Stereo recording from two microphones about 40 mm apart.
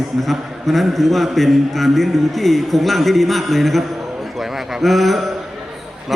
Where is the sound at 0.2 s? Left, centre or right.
Centre.